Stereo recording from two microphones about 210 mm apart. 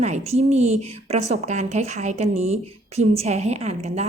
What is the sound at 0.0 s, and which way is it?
A woman's voice, 30° right (ahead or behind).